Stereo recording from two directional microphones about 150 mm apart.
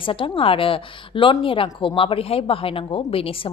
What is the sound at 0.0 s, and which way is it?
A woman's voice, 35° left (ahead or behind).